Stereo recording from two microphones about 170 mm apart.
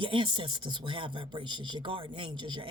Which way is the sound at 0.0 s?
30° right (ahead or behind).